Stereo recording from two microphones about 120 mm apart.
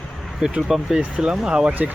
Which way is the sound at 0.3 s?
5° right (ahead or behind).